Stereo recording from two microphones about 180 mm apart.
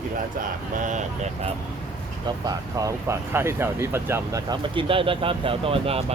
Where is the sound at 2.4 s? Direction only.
20° right (ahead or behind).